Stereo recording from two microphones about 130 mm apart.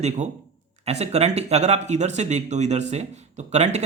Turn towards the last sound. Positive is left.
turn(degrees=-60)  # may be behind; listen again after turning